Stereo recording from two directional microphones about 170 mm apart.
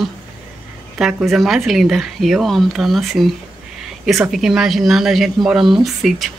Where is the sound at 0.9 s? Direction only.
Centre (ahead or behind).